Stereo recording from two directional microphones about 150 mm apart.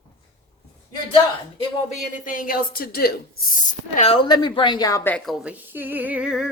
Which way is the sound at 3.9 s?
45° left (ahead or behind).